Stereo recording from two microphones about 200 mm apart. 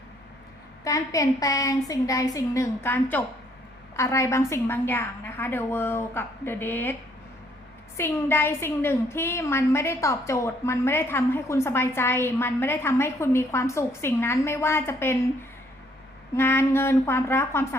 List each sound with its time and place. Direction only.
0.9 s a woman's voice: 15° left (ahead or behind)
7.9 s a woman's voice: 10° left (ahead or behind)
16.3 s a woman's voice: 10° left (ahead or behind)